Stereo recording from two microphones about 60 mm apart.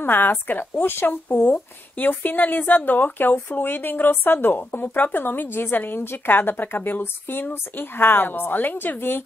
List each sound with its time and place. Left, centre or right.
0.0 s speech: left